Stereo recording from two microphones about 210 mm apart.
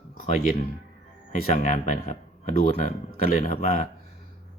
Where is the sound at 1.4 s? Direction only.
35° left (ahead or behind).